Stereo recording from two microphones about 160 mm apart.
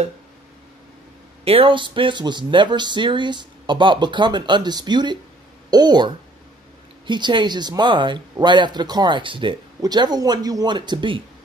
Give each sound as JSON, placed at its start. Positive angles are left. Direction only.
{"t": 1.4, "sound": "speech", "side_deg": -35}